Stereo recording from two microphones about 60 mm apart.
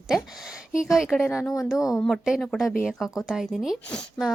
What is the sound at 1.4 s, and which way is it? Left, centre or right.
Speech, left.